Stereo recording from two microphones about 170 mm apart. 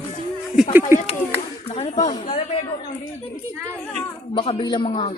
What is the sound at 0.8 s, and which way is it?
Speech, 50° left (ahead or behind).